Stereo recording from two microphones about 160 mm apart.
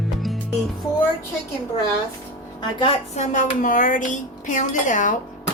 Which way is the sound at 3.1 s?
50° left (ahead or behind).